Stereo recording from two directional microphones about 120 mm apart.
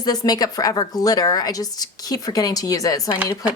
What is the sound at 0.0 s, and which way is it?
Speech, 35° left (ahead or behind).